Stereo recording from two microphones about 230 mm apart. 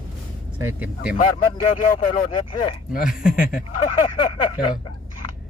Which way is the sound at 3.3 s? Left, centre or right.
Left.